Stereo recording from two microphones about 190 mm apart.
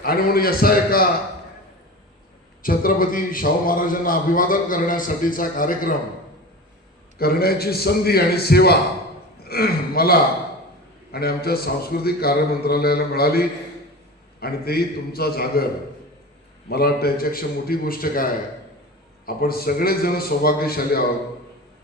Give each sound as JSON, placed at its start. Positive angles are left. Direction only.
{"t": 0.0, "sound": "a man's voice", "side_deg": 50}
{"t": 2.6, "sound": "a man's voice", "side_deg": 50}
{"t": 7.2, "sound": "a man's voice", "side_deg": 55}